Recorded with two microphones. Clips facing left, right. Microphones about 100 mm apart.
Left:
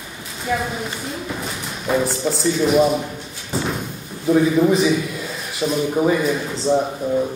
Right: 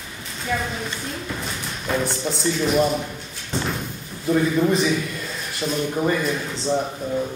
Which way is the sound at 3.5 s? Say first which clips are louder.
Left 2 dB; 5° left (ahead or behind).